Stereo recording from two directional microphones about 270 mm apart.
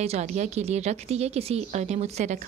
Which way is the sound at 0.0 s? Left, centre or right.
Right.